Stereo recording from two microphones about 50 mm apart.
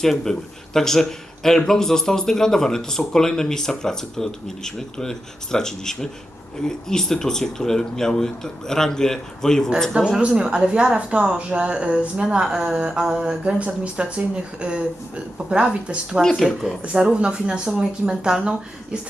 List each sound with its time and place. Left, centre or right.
0.0 s speech: centre
9.9 s speech: centre
16.4 s speech: centre
16.8 s speech: right